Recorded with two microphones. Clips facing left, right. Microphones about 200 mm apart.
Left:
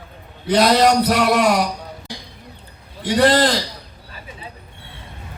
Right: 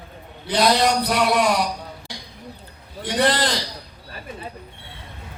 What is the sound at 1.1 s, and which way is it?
Speech, 55° left (ahead or behind).